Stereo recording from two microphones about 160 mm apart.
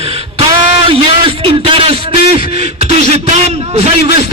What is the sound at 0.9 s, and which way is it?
A man's voice, 35° right (ahead or behind).